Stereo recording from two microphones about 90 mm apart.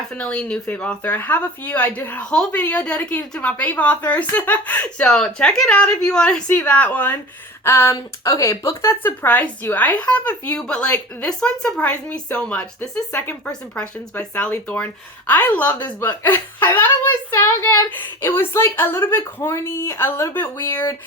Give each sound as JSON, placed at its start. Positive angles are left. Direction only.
{"t": 0.1, "sound": "a woman's voice", "side_deg": 10}
{"t": 2.3, "sound": "a woman's voice", "side_deg": 5}